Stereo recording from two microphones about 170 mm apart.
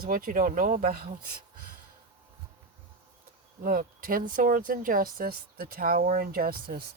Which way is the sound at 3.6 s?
55° right (ahead or behind).